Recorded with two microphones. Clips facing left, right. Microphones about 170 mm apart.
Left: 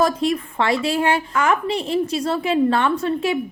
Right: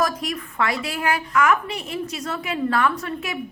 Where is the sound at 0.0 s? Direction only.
25° left (ahead or behind).